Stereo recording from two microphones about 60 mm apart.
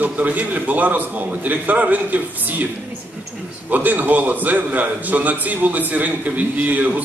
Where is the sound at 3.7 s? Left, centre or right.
Right.